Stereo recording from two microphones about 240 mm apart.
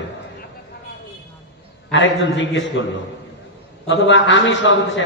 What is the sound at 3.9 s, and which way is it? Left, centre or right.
Speech, left.